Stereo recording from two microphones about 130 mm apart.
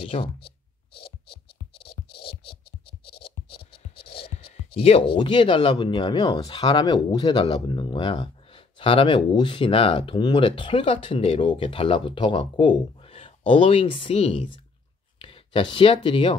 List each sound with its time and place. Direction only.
0.0 s speech: 45° left (ahead or behind)
3.1 s writing: 45° left (ahead or behind)
6.4 s speech: 35° left (ahead or behind)